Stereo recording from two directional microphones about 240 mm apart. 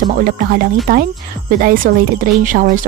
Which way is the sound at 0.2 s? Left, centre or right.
Right.